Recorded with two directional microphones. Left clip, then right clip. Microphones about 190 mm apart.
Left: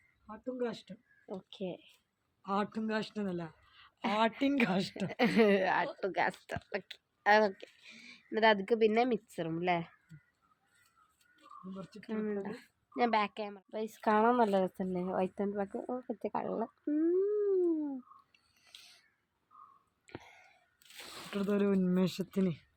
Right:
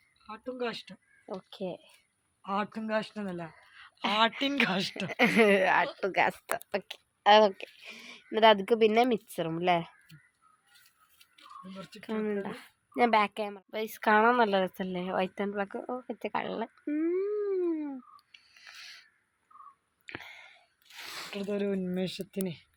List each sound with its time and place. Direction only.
0.3 s a woman's voice: 5° right (ahead or behind)
1.5 s speech: 30° right (ahead or behind)
4.4 s a woman's voice: 5° left (ahead or behind)
5.0 s speech: 25° right (ahead or behind)
11.9 s speech: 35° right (ahead or behind)
13.7 s a woman's voice: centre (ahead or behind)
16.0 s a sound: centre (ahead or behind)
20.1 s a sound: centre (ahead or behind)
21.0 s squish: 5° left (ahead or behind)
21.3 s speech: 50° left (ahead or behind)